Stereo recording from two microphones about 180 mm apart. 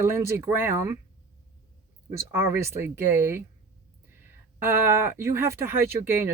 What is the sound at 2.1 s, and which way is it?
Speech, 15° right (ahead or behind).